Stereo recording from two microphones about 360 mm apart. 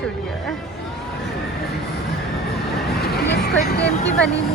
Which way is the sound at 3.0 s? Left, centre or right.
Left.